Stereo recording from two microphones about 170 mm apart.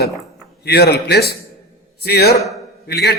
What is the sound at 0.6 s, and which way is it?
A man's voice, 70° left (ahead or behind).